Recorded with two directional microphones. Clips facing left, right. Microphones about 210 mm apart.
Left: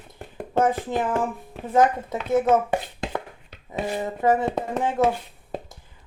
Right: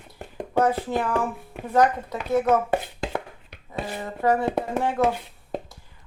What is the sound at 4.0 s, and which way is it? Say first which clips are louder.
Speech: left 1 dB; 20° left (ahead or behind).